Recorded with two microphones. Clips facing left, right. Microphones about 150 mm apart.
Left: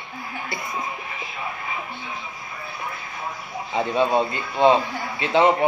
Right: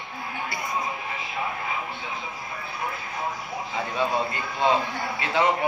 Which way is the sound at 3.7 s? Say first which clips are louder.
Left 6 dB; 25° left (ahead or behind).